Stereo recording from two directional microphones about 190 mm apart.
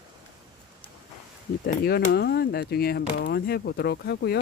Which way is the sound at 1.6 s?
55° left (ahead or behind).